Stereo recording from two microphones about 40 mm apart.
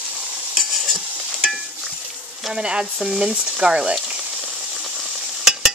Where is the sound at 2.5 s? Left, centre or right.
Centre.